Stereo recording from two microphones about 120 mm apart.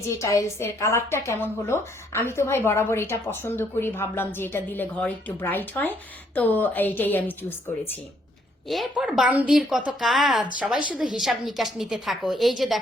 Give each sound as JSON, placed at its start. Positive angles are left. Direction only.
{"t": 0.0, "sound": "a woman's voice", "side_deg": 25}
{"t": 8.6, "sound": "a woman's voice", "side_deg": 0}